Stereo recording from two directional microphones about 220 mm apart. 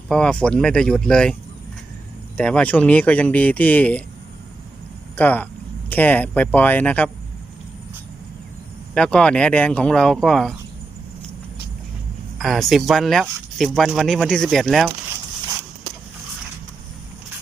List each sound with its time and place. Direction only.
0.1 s speech: 5° left (ahead or behind)
2.4 s speech: 5° left (ahead or behind)
5.1 s speech: 5° left (ahead or behind)
9.0 s speech: 5° left (ahead or behind)
12.4 s speech: centre (ahead or behind)